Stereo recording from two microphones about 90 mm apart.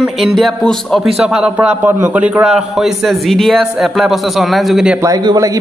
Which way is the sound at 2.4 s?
5° right (ahead or behind).